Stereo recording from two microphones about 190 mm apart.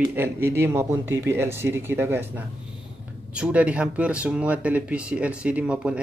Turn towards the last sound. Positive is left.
turn(degrees=-5)  # may be behind; listen again after turning